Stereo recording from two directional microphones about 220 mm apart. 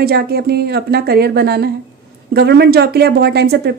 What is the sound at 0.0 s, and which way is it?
A woman's voice, 45° right (ahead or behind).